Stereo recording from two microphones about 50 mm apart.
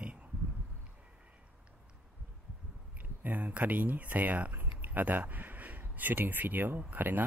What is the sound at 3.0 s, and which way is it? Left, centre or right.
Speech, right.